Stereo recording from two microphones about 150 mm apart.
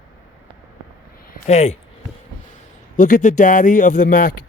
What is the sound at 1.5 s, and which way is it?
Speech, 45° left (ahead or behind).